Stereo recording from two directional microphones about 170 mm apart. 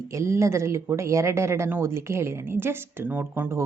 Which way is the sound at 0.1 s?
15° right (ahead or behind).